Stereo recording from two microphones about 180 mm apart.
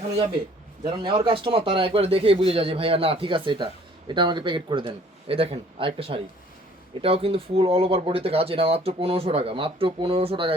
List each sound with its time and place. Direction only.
0.9 s a man's voice: 25° right (ahead or behind)